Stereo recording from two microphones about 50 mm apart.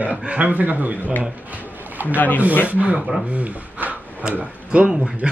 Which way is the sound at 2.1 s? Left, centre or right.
Left.